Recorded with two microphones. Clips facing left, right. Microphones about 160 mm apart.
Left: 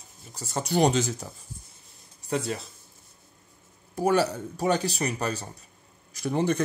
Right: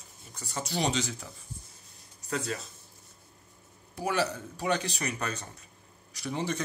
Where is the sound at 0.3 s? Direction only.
40° left (ahead or behind).